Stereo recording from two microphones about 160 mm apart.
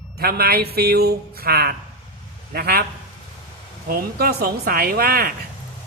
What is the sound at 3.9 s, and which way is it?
A woman's voice, 70° right (ahead or behind).